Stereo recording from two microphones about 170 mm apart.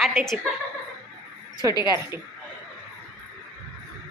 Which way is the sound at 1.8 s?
15° right (ahead or behind).